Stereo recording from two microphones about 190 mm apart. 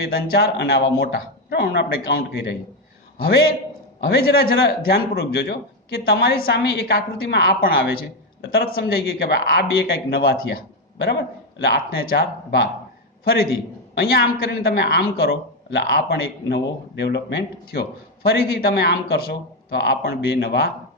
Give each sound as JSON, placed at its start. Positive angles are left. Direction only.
{"t": 0.1, "sound": "a man's voice", "side_deg": 55}